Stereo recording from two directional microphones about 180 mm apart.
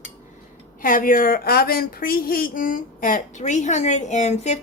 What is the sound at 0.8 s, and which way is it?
A woman's voice, 50° left (ahead or behind).